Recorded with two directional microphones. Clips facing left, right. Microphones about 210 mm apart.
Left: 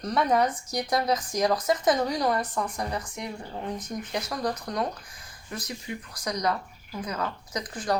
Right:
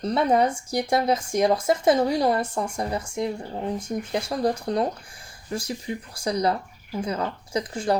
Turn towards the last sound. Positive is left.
turn(degrees=-25)  # may be behind; listen again after turning